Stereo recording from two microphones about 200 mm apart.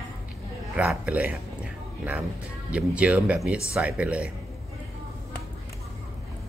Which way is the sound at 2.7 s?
5° right (ahead or behind).